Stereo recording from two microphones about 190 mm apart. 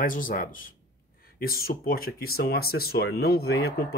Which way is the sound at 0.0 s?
45° left (ahead or behind).